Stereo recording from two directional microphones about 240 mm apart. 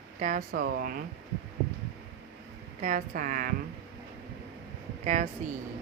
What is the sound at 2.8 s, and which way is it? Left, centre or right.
Speech, right.